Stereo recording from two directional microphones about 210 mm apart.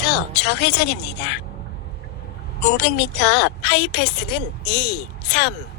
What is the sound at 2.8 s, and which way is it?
Speech, 55° left (ahead or behind).